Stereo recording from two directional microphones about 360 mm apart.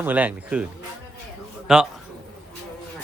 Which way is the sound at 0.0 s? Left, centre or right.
Centre.